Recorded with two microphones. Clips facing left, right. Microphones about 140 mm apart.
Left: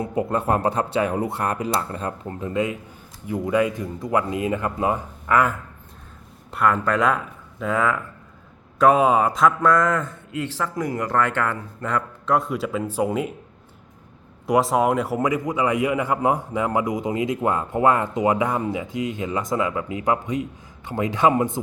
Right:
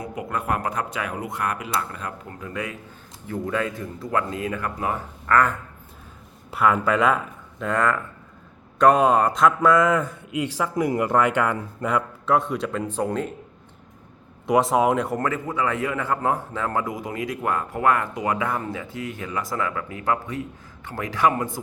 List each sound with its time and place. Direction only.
0.0 s a man's voice: 30° left (ahead or behind); by 5.5 s 10° left (ahead or behind)
6.5 s a man's voice: 5° right (ahead or behind)
14.4 s a man's voice: centre (ahead or behind); by 21.6 s 20° left (ahead or behind)